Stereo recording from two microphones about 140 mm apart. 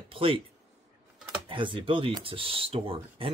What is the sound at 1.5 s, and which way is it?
Speech, 35° right (ahead or behind).